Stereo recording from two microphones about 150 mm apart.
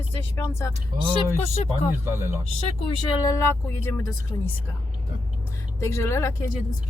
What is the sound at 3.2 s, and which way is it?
Speech, 20° left (ahead or behind).